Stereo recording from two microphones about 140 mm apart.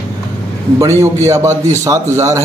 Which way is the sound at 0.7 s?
20° right (ahead or behind).